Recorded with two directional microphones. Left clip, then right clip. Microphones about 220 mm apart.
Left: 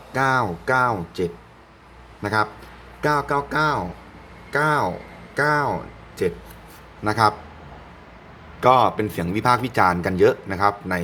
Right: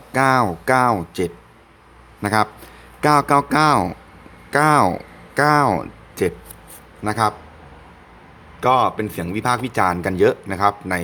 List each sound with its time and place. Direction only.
0.1 s speech: 20° right (ahead or behind)
7.0 s speech: 10° right (ahead or behind)
8.6 s speech: 5° right (ahead or behind)